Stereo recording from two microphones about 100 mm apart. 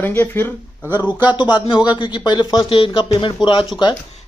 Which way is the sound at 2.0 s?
45° left (ahead or behind).